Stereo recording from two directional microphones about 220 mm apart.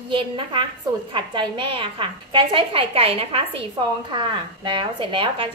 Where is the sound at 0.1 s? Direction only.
20° right (ahead or behind).